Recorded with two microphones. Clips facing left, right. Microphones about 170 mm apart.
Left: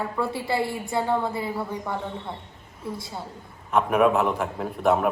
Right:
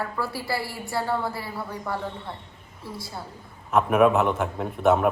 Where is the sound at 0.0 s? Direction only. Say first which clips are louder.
Left 2 dB; 20° left (ahead or behind).